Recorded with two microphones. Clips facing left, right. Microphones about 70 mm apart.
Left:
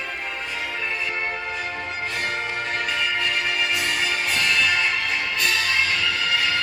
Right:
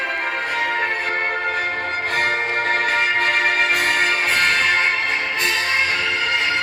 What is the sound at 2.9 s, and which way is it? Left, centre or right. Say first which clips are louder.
Music: right 6 dB; right.